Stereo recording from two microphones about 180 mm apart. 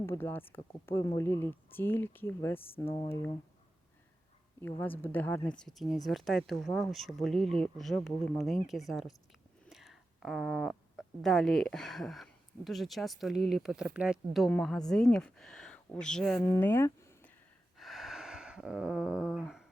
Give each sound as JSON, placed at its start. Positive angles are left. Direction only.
{"t": 0.0, "sound": "speech", "side_deg": 15}
{"t": 2.8, "sound": "speech", "side_deg": 30}
{"t": 3.1, "sound": "speech", "side_deg": 15}
{"t": 4.8, "sound": "a woman's voice", "side_deg": 10}
{"t": 17.7, "sound": "a sound", "side_deg": 0}